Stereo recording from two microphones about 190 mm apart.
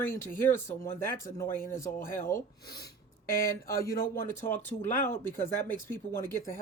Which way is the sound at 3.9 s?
50° left (ahead or behind).